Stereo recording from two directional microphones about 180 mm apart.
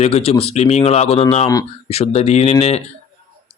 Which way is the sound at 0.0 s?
35° left (ahead or behind).